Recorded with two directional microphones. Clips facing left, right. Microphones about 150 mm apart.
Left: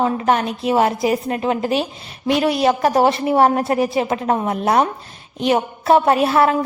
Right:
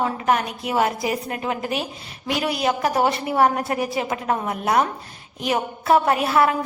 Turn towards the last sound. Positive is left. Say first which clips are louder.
# left 4 dB
turn(degrees=30)  # may be behind; listen again after turning